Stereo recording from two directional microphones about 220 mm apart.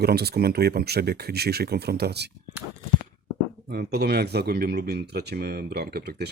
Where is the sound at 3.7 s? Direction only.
45° right (ahead or behind).